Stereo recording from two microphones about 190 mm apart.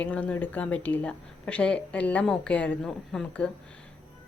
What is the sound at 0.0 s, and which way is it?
Speech, 5° left (ahead or behind).